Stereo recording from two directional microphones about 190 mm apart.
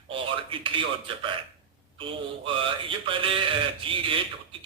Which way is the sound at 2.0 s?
25° right (ahead or behind).